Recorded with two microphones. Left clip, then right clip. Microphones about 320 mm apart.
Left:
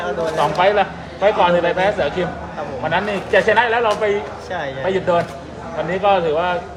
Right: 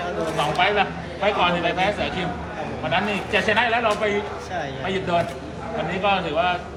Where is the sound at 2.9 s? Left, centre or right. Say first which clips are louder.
Left 4 dB; left.